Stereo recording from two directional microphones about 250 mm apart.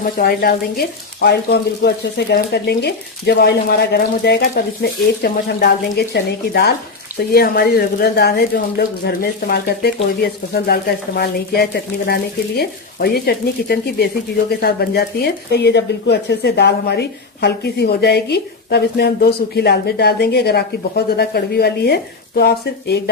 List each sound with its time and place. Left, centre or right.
0.0 s speech: left